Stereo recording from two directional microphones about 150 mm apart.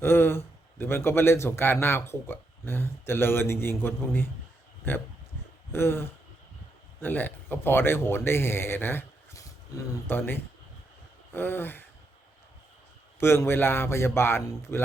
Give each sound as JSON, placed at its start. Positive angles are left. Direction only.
{"t": 0.0, "sound": "a man's voice", "side_deg": 15}
{"t": 5.7, "sound": "a man's voice", "side_deg": 15}
{"t": 13.1, "sound": "a man's voice", "side_deg": 15}